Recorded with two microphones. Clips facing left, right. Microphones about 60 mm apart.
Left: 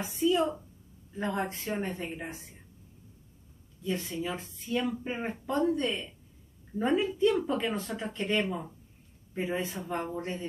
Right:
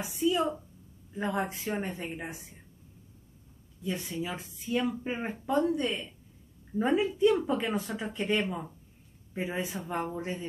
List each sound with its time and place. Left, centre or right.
0.0 s a woman's voice: centre
3.8 s speech: centre